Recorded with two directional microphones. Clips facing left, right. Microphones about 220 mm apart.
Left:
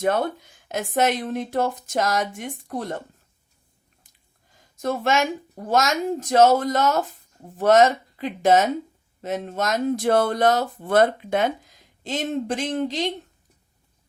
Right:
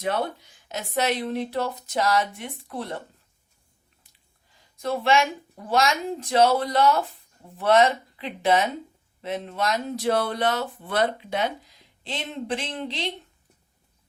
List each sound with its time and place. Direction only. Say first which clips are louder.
0.0 s speech: left 4 dB; 50° left (ahead or behind)
4.5 s speech: left 2 dB; 45° left (ahead or behind)